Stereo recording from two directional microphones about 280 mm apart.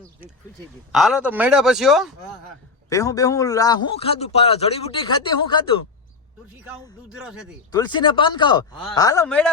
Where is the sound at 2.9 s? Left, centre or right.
Centre.